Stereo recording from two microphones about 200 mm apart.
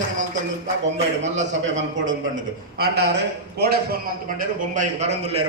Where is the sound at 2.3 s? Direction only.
50° right (ahead or behind).